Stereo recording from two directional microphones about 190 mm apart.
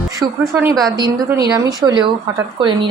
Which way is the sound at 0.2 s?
15° right (ahead or behind).